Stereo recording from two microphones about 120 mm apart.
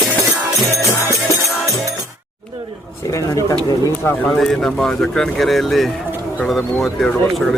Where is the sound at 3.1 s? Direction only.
30° left (ahead or behind).